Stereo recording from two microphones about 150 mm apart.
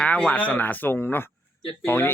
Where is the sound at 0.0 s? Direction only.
10° left (ahead or behind).